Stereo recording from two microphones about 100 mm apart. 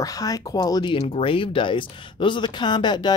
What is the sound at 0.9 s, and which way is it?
Speech, 80° left.